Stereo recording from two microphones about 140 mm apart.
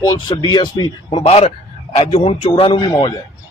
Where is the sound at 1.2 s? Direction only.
50° left (ahead or behind).